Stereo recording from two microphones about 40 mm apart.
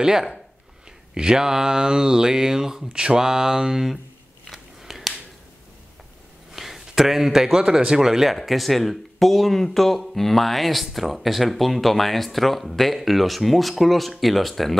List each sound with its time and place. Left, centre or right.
0.0 s speech: centre
4.5 s biting: centre
6.5 s a sound: centre
7.5 s speech: centre